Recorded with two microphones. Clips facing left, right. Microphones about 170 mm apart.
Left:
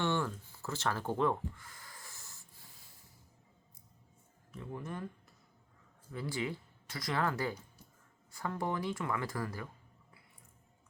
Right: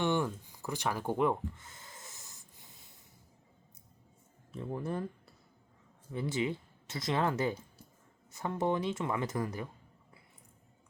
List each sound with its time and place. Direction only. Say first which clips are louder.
0.0 s a sound: right 3 dB; 15° right (ahead or behind)
4.5 s speech: right 6 dB; 35° right (ahead or behind)
6.1 s speech: right 4 dB; 20° right (ahead or behind)